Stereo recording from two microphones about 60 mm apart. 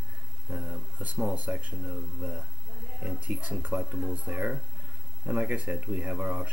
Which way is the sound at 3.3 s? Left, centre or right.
Right.